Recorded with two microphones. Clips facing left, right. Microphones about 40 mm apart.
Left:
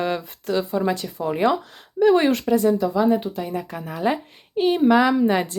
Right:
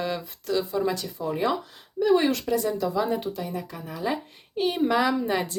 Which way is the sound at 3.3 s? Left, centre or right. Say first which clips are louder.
Left 5 dB; left.